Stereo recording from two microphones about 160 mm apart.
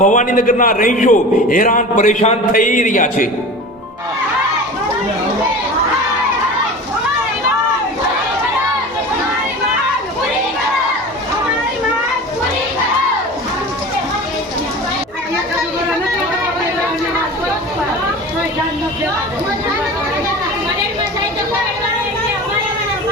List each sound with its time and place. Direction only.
0.0 s a man's voice: 50° left (ahead or behind)